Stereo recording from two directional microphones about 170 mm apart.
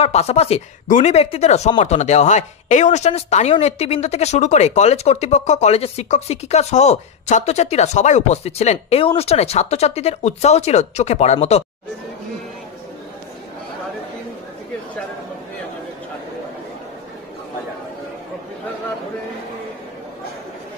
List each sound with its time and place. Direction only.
0.0 s speech: 40° left (ahead or behind)